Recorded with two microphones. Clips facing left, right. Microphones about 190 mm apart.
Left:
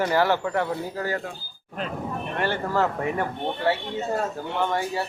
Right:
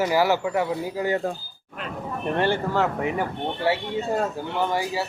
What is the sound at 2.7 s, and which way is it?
Speech, centre (ahead or behind).